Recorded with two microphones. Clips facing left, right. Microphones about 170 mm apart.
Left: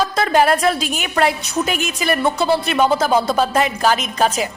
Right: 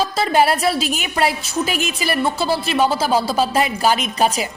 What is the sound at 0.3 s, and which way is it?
A woman's voice, 10° right (ahead or behind).